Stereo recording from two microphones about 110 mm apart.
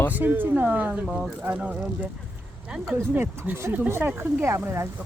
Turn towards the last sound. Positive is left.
turn(degrees=-25)  # may be behind; listen again after turning